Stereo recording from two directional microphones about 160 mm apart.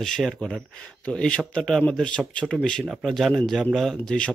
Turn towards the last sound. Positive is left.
turn(degrees=5)  # may be behind; listen again after turning